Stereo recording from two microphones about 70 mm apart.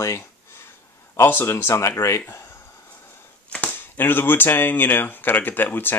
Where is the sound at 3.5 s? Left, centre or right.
Left.